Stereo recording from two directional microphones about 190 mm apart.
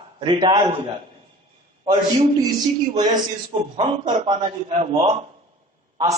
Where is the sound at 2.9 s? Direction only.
20° right (ahead or behind).